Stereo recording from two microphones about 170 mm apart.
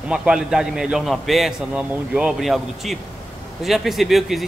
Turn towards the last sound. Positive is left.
turn(degrees=0)  # may be behind; listen again after turning